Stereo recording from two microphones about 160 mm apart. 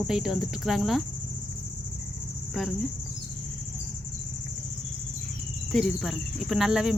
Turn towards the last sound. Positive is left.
turn(degrees=-5)  # may be behind; listen again after turning